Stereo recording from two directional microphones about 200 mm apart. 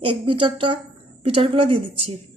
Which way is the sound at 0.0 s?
25° right (ahead or behind).